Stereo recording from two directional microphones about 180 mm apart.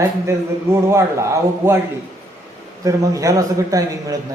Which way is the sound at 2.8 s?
20° right (ahead or behind).